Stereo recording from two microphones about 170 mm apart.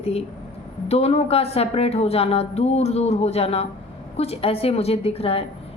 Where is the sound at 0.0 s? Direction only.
35° left (ahead or behind).